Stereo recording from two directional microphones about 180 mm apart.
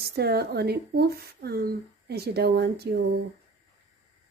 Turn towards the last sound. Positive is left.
turn(degrees=-65)  # may be behind; listen again after turning